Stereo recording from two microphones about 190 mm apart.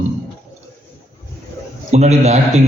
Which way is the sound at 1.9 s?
35° right (ahead or behind).